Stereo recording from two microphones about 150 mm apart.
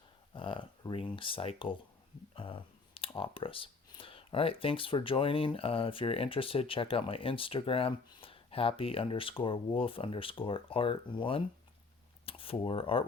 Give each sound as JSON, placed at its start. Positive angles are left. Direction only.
{"t": 0.3, "sound": "speech", "side_deg": 35}